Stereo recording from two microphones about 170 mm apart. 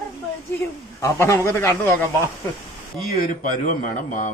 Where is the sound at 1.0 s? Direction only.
15° left (ahead or behind).